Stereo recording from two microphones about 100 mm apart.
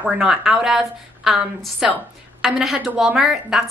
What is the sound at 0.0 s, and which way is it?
A woman's voice, 5° right (ahead or behind).